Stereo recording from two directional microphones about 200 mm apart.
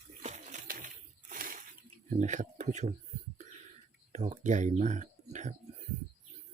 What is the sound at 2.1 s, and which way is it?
Speech, 35° right (ahead or behind).